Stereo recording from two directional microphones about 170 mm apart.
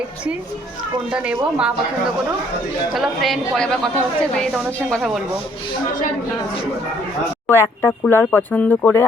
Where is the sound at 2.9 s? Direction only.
Centre (ahead or behind).